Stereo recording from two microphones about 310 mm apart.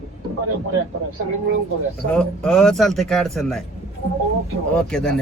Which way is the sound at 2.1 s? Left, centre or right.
Centre.